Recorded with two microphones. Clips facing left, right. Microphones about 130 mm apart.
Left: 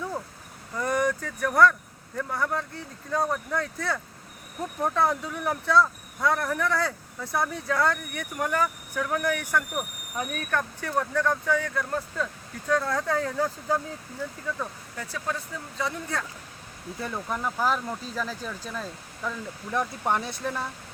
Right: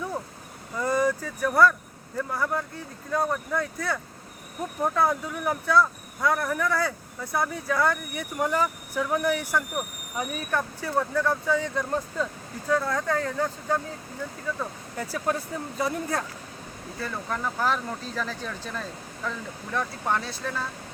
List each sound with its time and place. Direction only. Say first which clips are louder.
0.8 s speech: right 1 dB; 15° right (ahead or behind)
12.2 s speech: right 2 dB; 5° right (ahead or behind)
14.9 s speech: right 5 dB; 30° right (ahead or behind)
15.8 s speech: right 3 dB; 45° right (ahead or behind)
17.0 s speech: even; 15° left (ahead or behind)